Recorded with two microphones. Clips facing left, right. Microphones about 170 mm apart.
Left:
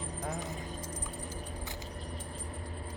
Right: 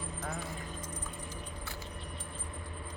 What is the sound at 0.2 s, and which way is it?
Keys jangling, 20° left (ahead or behind).